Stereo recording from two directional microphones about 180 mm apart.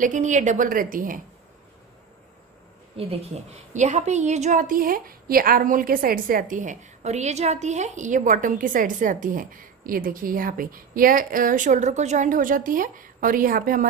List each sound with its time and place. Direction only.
0.0 s a woman's voice: 45° right (ahead or behind)
3.0 s a woman's voice: 35° right (ahead or behind); by 13.8 s 50° right (ahead or behind)